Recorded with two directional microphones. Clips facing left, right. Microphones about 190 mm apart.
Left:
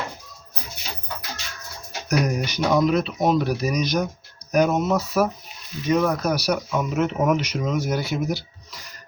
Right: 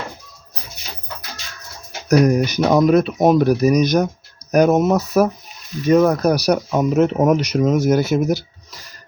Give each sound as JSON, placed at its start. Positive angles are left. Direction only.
{"t": 2.0, "sound": "speech", "side_deg": -45}